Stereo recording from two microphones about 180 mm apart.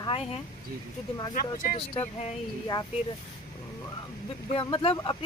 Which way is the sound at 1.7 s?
30° left (ahead or behind).